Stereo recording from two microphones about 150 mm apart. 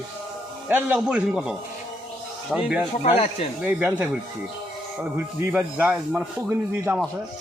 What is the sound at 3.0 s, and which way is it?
Speech, 40° left (ahead or behind).